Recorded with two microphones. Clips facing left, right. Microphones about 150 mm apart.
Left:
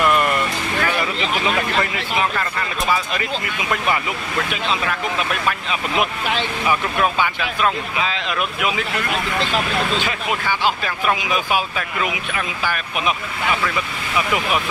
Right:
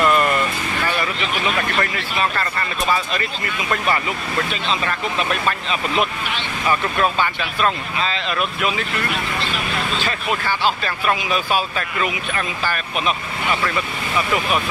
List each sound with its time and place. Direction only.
0.0 s vehicle: 10° left (ahead or behind)
1.8 s speech: 15° left (ahead or behind)
9.9 s speech: 15° left (ahead or behind)
14.1 s speech: 10° left (ahead or behind)